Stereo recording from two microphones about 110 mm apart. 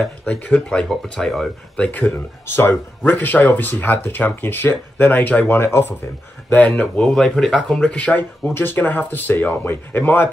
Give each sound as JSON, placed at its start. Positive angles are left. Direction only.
{"t": 0.0, "sound": "speech", "side_deg": 10}
{"t": 1.8, "sound": "speech", "side_deg": 15}